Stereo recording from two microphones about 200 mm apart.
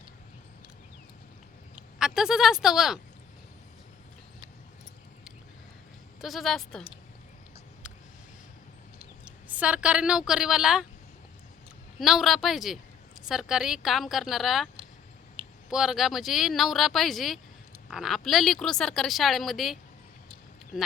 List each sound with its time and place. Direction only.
1.7 s speech: 5° right (ahead or behind)
6.2 s speech: centre (ahead or behind)
9.2 s speech: 5° right (ahead or behind)
11.9 s speech: centre (ahead or behind)
15.4 s a sound: 25° right (ahead or behind)
15.7 s speech: centre (ahead or behind)